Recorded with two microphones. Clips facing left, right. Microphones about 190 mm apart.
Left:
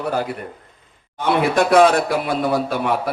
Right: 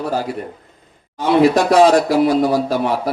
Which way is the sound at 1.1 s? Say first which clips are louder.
Right 4 dB; 55° left (ahead or behind).